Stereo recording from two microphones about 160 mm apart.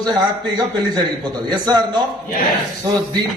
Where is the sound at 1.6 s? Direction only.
25° right (ahead or behind).